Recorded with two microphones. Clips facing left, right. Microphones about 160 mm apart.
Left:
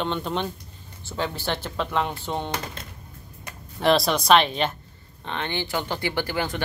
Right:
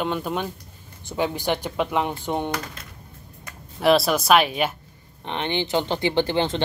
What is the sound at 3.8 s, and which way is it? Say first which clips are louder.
Speech: right 2 dB; 5° right (ahead or behind).